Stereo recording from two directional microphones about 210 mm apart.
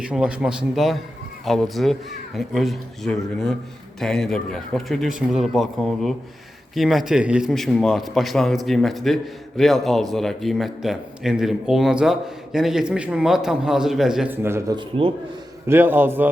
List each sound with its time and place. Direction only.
0.0 s a man's voice: 5° right (ahead or behind)
14.8 s speech: 25° right (ahead or behind)
15.6 s a man's voice: 10° right (ahead or behind)